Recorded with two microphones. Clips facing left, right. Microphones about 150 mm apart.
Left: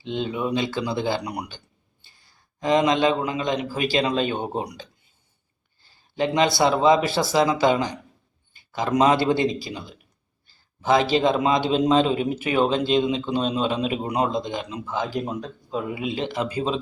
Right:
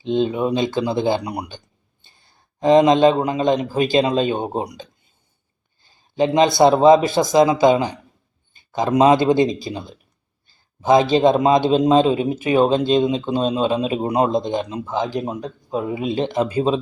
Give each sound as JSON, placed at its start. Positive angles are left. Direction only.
{"t": 0.0, "sound": "speech", "side_deg": -20}
{"t": 3.2, "sound": "a man's voice", "side_deg": -40}
{"t": 3.7, "sound": "speech", "side_deg": -25}
{"t": 5.8, "sound": "a sound", "side_deg": -20}
{"t": 6.6, "sound": "speech", "side_deg": -25}
{"t": 13.8, "sound": "a man's voice", "side_deg": -30}
{"t": 15.9, "sound": "speech", "side_deg": -30}